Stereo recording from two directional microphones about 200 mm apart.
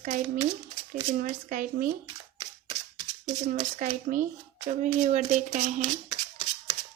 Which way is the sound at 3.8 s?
45° right (ahead or behind).